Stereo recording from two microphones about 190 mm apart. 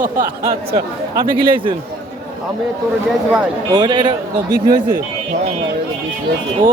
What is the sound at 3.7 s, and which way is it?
Speech, 25° right (ahead or behind).